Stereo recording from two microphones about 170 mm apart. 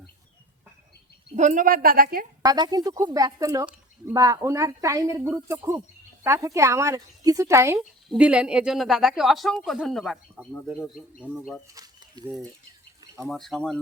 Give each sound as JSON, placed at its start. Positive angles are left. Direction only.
{"t": 1.4, "sound": "a woman's voice", "side_deg": -50}
{"t": 2.4, "sound": "a woman's voice", "side_deg": -25}
{"t": 7.8, "sound": "speech", "side_deg": -5}
{"t": 11.7, "sound": "a sound", "side_deg": -20}
{"t": 13.2, "sound": "speech", "side_deg": 0}